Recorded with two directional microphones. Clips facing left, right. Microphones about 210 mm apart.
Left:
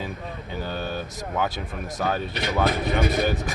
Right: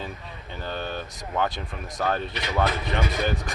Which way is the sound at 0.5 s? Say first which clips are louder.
Left 2 dB; 5° left (ahead or behind).